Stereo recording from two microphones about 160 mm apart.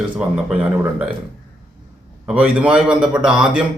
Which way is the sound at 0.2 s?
10° right (ahead or behind).